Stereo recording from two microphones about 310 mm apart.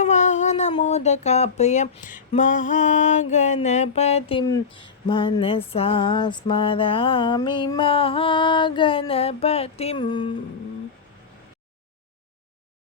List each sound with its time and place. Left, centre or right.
0.0 s speech: left